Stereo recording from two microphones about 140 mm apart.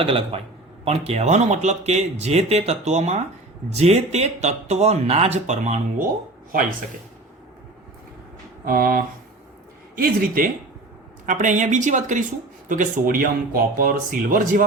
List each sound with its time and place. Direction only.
0.0 s a man's voice: 40° right (ahead or behind)
6.5 s speech: 80° right
8.6 s speech: 90° right
11.3 s speech: 65° right (ahead or behind)